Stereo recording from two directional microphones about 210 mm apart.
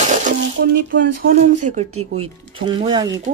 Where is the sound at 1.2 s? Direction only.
35° right (ahead or behind).